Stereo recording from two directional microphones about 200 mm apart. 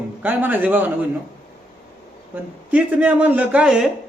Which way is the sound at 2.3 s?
10° right (ahead or behind).